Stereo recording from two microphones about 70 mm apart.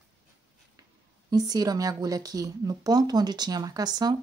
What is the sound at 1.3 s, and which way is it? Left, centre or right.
Speech, right.